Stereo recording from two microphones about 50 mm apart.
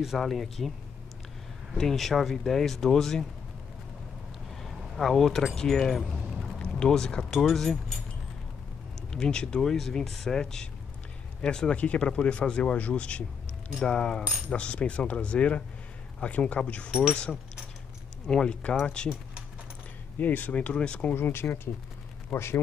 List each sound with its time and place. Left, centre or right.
0.0 s speech: centre
1.8 s speech: centre
4.6 s vehicle: centre
5.6 s speech: centre
7.3 s speech: centre
9.1 s speech: centre
18.2 s speech: centre
20.2 s speech: left
20.6 s speech: left
21.1 s speech: left